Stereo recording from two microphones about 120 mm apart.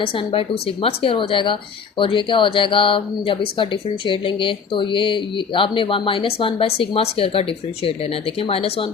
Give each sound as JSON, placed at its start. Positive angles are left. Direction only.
{"t": 0.0, "sound": "speech", "side_deg": 50}